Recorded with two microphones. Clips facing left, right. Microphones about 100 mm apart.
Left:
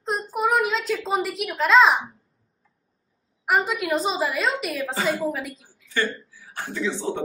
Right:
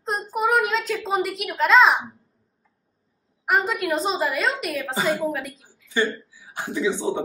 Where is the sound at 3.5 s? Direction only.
Centre (ahead or behind).